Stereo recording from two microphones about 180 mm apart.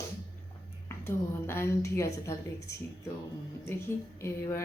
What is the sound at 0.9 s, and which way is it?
Speech, 15° left (ahead or behind).